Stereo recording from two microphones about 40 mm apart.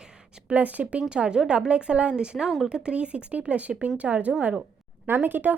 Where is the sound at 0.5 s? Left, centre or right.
Right.